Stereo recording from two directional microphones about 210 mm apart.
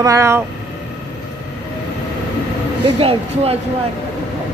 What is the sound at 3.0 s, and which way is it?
Speech, 25° right (ahead or behind).